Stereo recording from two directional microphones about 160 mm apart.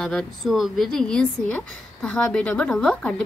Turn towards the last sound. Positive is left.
turn(degrees=5)  # may be behind; listen again after turning